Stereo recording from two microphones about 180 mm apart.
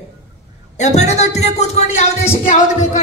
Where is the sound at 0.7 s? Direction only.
40° left (ahead or behind).